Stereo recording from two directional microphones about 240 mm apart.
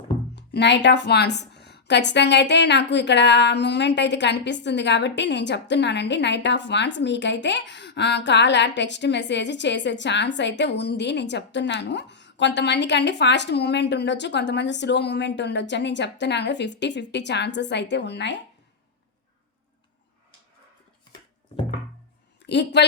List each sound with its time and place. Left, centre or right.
0.3 s a woman's voice: left
21.5 s music: left
22.4 s a woman's voice: left